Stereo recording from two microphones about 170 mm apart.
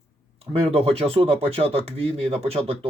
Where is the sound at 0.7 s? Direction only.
35° right (ahead or behind).